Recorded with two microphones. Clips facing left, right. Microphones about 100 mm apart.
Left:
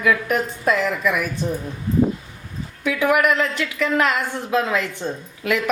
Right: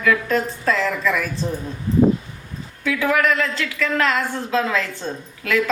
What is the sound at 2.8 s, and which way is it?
A woman's voice, 15° left (ahead or behind).